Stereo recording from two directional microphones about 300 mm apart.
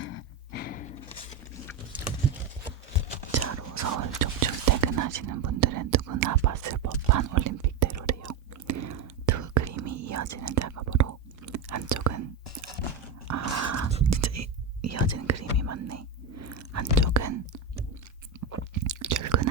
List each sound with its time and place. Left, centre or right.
0.0 s a sound: left
3.3 s whispering: right
13.2 s dog: right
14.0 s whispering: right
18.3 s chewing: right